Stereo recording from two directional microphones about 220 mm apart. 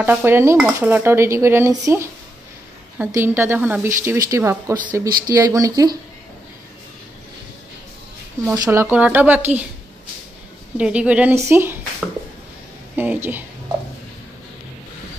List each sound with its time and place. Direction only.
0.0 s dishes: 10° right (ahead or behind)
5.0 s speech: 40° right (ahead or behind)
5.3 s dishes: 15° right (ahead or behind)
8.5 s dishes: 10° right (ahead or behind)
10.8 s dishes: 5° right (ahead or behind)
12.9 s dishes: 10° right (ahead or behind)